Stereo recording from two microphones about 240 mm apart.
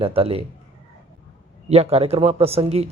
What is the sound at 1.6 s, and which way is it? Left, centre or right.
Speech, right.